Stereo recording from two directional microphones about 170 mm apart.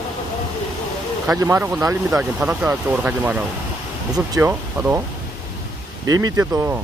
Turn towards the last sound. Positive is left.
turn(degrees=-15)  # may be behind; listen again after turning